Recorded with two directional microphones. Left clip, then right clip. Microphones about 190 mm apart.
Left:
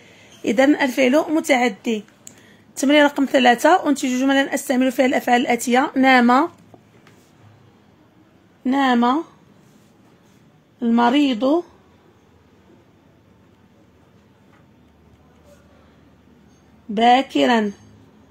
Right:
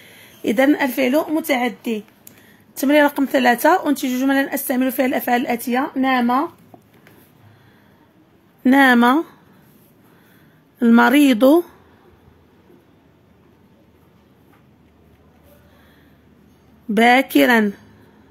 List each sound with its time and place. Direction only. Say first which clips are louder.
0.2 s a woman's voice: even; 10° right (ahead or behind); by 2.3 s 10° left (ahead or behind)
2.3 s a woman's voice: left 3 dB; centre (ahead or behind); by 6.4 s 20° left (ahead or behind)
8.6 s speech: right 5 dB; 40° right (ahead or behind)
10.8 s speech: right 4 dB; 35° right (ahead or behind)
16.9 s speech: right 1 dB; 35° right (ahead or behind)